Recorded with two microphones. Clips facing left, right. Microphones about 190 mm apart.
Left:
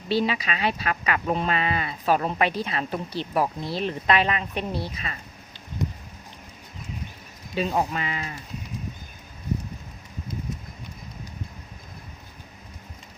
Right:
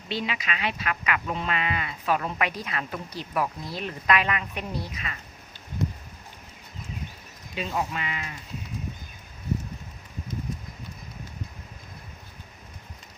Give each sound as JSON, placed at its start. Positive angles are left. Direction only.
{"t": 0.1, "sound": "speech", "side_deg": 35}
{"t": 7.5, "sound": "speech", "side_deg": 35}